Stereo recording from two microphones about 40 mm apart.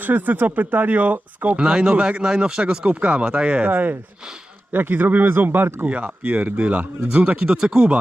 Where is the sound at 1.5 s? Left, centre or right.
Right.